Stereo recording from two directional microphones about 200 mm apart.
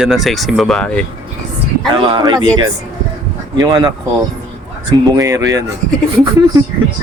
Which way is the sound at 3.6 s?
20° right (ahead or behind).